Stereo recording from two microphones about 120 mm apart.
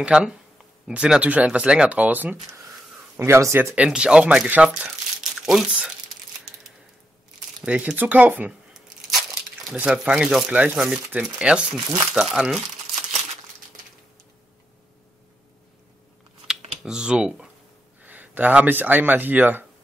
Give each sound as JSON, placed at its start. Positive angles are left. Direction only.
{"t": 0.0, "sound": "speech", "side_deg": -5}
{"t": 3.2, "sound": "speech", "side_deg": -25}
{"t": 3.7, "sound": "speech", "side_deg": -10}
{"t": 7.6, "sound": "crumpling", "side_deg": -10}
{"t": 9.8, "sound": "speech", "side_deg": -5}
{"t": 16.4, "sound": "computer keyboard", "side_deg": -5}
{"t": 18.0, "sound": "speech", "side_deg": -15}